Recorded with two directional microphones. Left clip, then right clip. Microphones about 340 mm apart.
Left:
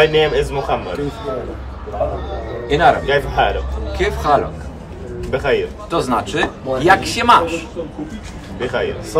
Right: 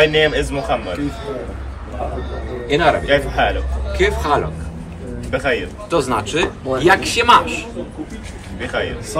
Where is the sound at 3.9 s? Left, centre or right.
Centre.